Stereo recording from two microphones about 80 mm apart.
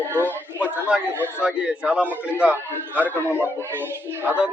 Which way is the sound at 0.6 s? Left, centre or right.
Centre.